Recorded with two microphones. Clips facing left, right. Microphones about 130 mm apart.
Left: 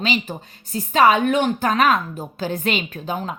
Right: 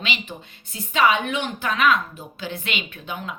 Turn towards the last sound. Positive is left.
turn(degrees=40)  # may be behind; listen again after turning